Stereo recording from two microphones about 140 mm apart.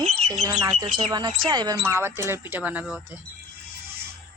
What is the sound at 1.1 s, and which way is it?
Speech, 30° right (ahead or behind).